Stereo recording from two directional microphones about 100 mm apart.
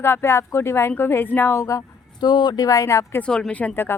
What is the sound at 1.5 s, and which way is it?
Speech, 30° left (ahead or behind).